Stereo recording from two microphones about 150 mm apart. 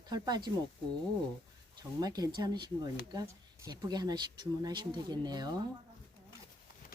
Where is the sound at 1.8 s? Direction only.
25° right (ahead or behind).